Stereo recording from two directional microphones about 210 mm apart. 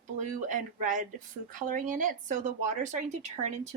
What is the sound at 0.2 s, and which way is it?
A woman's voice, 35° right (ahead or behind).